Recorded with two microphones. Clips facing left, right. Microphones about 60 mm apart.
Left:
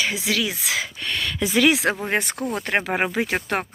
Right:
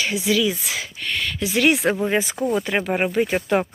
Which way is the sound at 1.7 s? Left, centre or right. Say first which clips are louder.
Right 1 dB; left.